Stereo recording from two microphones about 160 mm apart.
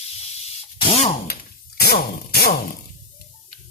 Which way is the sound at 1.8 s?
85° left.